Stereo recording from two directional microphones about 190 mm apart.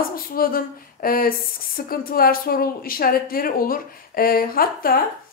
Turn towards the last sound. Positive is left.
turn(degrees=50)  # may be behind; listen again after turning